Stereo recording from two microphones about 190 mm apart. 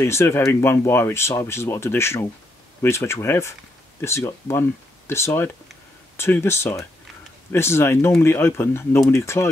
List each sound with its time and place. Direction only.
0.0 s speech: 15° left (ahead or behind)